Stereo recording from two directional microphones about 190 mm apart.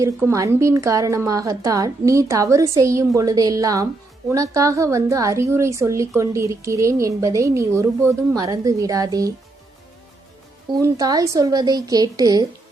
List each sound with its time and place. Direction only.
0.0 s a woman's voice: 15° right (ahead or behind)
10.7 s a woman's voice: 20° right (ahead or behind)